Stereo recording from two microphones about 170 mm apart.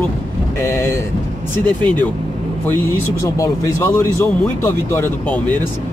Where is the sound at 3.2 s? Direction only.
20° left (ahead or behind).